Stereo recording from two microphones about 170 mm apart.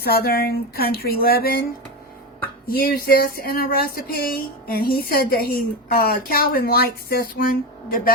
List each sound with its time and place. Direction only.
0.0 s speech: 65° left (ahead or behind)
2.6 s speech: 60° left (ahead or behind)